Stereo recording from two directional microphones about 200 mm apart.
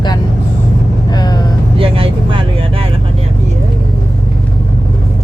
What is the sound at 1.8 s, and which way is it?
Vehicle, 25° right (ahead or behind).